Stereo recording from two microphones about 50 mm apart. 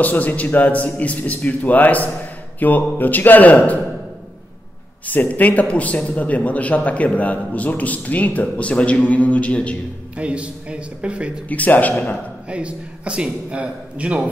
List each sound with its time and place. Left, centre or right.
0.0 s a man's voice: left
5.0 s a man's voice: left
10.1 s a man's voice: right
11.4 s a man's voice: left
12.4 s a man's voice: right